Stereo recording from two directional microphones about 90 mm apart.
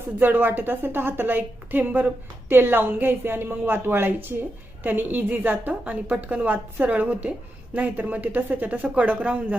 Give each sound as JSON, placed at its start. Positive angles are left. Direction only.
{"t": 0.2, "sound": "a woman's voice", "side_deg": -20}